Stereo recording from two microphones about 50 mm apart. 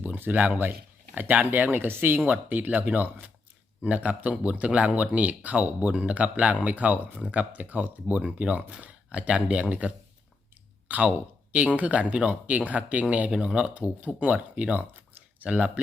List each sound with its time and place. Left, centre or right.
0.0 s speech: right; by 13.7 s centre
13.7 s speech: right